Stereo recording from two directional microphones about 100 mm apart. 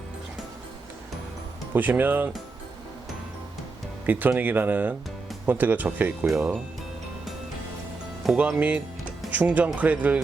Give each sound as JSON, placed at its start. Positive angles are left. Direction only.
{"t": 1.7, "sound": "speech", "side_deg": -20}
{"t": 4.0, "sound": "speech", "side_deg": -20}
{"t": 6.2, "sound": "speech", "side_deg": -5}
{"t": 8.4, "sound": "speech", "side_deg": -15}